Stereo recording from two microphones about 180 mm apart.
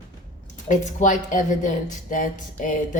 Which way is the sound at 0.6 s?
40° left (ahead or behind).